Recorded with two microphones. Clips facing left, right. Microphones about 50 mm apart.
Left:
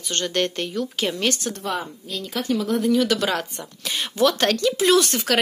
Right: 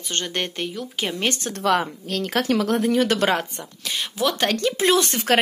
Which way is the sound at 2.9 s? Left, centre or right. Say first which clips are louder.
Right 1 dB; right.